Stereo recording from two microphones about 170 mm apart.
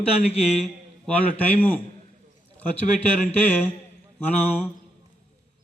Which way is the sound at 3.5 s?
10° left (ahead or behind).